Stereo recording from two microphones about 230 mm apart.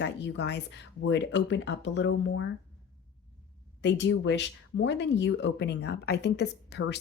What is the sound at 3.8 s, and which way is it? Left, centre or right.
Speech, left.